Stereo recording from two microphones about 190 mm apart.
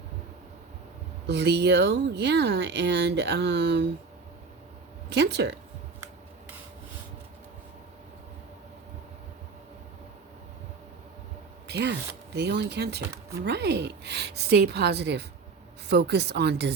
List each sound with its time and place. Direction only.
1.3 s speech: 60° right (ahead or behind)
5.0 s speech: 65° right (ahead or behind)
11.7 s speech: 65° right (ahead or behind)